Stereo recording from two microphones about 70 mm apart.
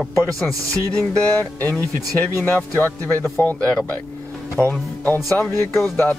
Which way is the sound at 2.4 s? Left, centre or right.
Left.